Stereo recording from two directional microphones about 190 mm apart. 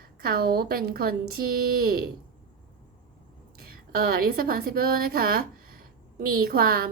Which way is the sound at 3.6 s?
50° right (ahead or behind).